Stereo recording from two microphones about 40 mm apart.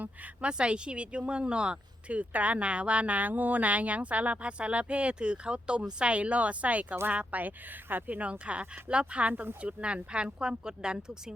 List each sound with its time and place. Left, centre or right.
0.4 s speech: right
4.4 s speech: right
7.9 s speech: right
8.1 s speech: right
9.3 s speech: right
9.6 s speech: right